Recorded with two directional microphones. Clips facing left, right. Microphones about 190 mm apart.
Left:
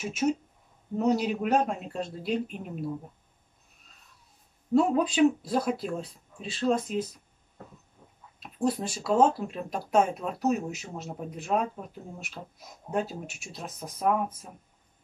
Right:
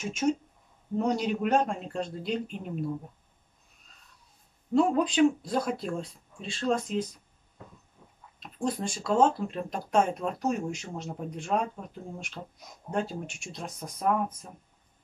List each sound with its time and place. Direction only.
0.0 s speech: 5° left (ahead or behind)
4.7 s speech: 5° left (ahead or behind)
8.4 s speech: 5° left (ahead or behind)